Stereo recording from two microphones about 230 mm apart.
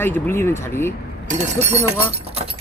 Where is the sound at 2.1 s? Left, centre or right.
Right.